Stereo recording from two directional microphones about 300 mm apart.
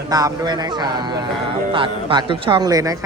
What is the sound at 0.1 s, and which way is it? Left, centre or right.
Speech, centre.